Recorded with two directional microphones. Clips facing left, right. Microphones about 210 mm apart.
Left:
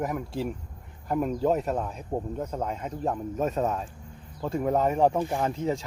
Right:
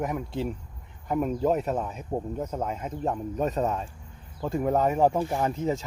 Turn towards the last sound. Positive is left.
turn(degrees=-5)  # may be behind; listen again after turning